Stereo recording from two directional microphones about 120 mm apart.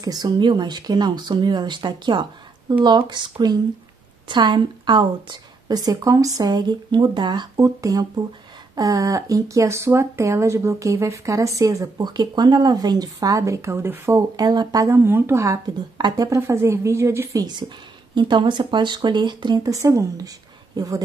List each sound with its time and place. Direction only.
0.0 s a woman's voice: 35° right (ahead or behind)
14.3 s a woman's voice: 35° right (ahead or behind)